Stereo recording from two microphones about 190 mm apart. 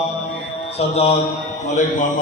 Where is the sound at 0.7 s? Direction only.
35° left (ahead or behind).